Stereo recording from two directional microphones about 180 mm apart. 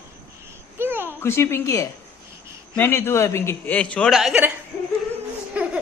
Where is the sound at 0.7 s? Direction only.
10° right (ahead or behind).